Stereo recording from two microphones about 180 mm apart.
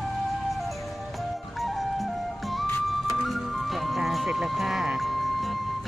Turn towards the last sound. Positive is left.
turn(degrees=0)  # may be behind; listen again after turning